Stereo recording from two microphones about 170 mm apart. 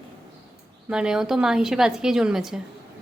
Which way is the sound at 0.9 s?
5° right (ahead or behind).